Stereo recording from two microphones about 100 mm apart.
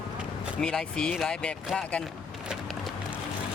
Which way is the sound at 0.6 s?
5° left (ahead or behind).